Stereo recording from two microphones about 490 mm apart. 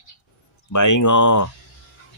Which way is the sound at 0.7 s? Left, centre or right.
Left.